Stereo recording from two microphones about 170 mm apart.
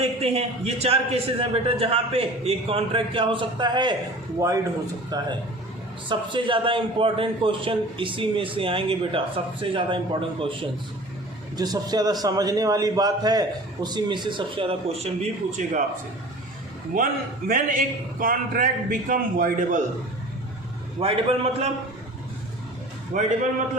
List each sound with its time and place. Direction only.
0.2 s a man's voice: 35° right (ahead or behind)
17.5 s a man's voice: 55° right (ahead or behind)
21.0 s a man's voice: 35° right (ahead or behind)
23.1 s a man's voice: 50° right (ahead or behind)